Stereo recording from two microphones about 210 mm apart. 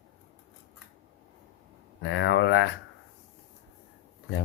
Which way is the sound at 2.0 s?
55° left (ahead or behind).